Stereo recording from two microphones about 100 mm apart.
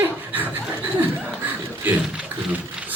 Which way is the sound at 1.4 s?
20° right (ahead or behind).